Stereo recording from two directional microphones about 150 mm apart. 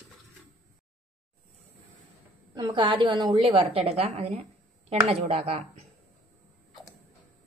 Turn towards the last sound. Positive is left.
turn(degrees=-40)  # may be behind; listen again after turning